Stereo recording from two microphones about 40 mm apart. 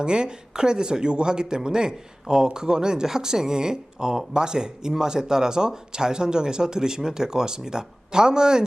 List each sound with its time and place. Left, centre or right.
0.0 s speech: right